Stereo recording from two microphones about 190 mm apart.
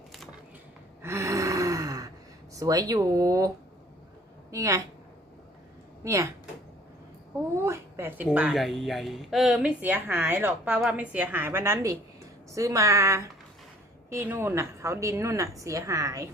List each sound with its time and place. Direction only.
1.0 s gasp: 15° right (ahead or behind)
2.6 s a woman's voice: 20° right (ahead or behind)
4.5 s a woman's voice: 15° right (ahead or behind)
6.0 s a woman's voice: 15° right (ahead or behind)
7.6 s a woman's voice: 15° right (ahead or behind)